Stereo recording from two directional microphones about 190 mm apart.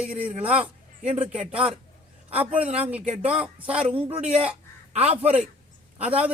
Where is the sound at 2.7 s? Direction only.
10° right (ahead or behind).